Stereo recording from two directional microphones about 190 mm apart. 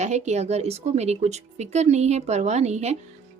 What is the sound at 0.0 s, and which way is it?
Speech, 35° right (ahead or behind).